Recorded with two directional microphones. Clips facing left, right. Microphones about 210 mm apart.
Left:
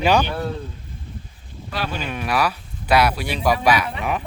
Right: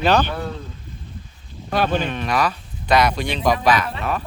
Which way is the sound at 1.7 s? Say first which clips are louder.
Right 7 dB; 50° right (ahead or behind).